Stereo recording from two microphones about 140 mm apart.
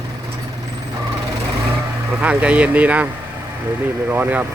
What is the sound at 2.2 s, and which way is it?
Speech, 10° right (ahead or behind).